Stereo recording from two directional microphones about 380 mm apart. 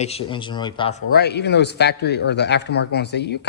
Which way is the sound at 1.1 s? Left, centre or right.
Left.